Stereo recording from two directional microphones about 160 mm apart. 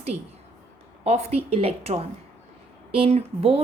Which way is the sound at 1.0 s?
40° right (ahead or behind).